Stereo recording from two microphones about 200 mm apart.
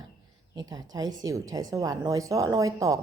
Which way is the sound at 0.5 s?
20° right (ahead or behind).